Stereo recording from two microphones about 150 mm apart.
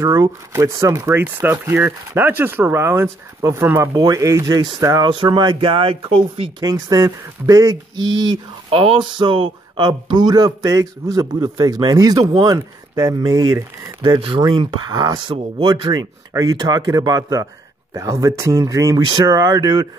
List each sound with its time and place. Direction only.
0.0 s speech: 20° right (ahead or behind); by 6.5 s 40° right (ahead or behind)
6.6 s speech: 25° right (ahead or behind)
8.6 s speech: 35° right (ahead or behind)